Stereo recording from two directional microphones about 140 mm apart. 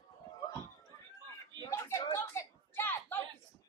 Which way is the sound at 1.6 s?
20° left (ahead or behind).